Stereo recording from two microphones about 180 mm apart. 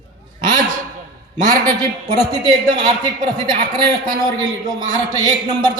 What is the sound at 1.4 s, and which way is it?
A man's voice, 20° right (ahead or behind).